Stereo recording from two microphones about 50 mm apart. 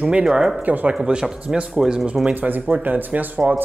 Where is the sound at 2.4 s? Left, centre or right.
Right.